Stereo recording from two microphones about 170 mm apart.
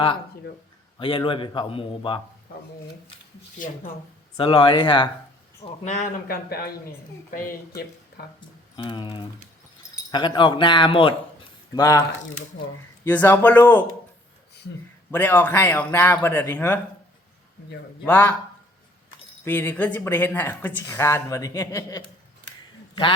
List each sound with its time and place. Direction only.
0.9 s a man's voice: 30° left (ahead or behind)
4.4 s speech: 30° left (ahead or behind)
5.8 s speech: 45° left (ahead or behind)
8.7 s a man's voice: 30° left (ahead or behind)
13.1 s speech: 10° left (ahead or behind)
15.1 s speech: 10° left (ahead or behind)
18.0 s speech: 10° left (ahead or behind)
19.5 s speech: 10° left (ahead or behind)